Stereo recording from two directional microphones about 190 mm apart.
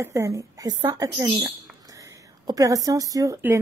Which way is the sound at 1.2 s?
Centre (ahead or behind).